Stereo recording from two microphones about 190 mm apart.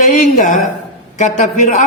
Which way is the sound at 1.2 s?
40° left (ahead or behind).